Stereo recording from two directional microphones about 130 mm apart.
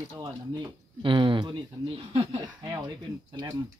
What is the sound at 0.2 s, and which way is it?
Speech, 40° right (ahead or behind).